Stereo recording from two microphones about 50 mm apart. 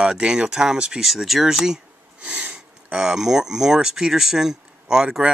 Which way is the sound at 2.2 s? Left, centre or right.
Right.